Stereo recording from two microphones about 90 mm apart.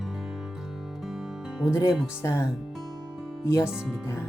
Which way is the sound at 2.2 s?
35° left (ahead or behind).